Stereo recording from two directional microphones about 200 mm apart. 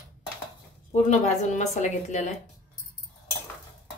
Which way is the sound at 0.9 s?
35° left (ahead or behind).